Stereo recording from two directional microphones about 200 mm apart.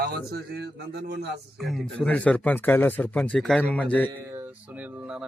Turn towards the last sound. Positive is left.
turn(degrees=-5)  # may be behind; listen again after turning